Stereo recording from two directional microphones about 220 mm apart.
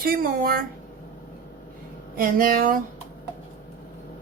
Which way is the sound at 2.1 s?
40° right (ahead or behind).